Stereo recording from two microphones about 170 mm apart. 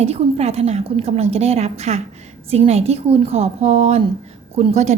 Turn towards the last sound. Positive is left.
turn(degrees=-40)  # may be behind; listen again after turning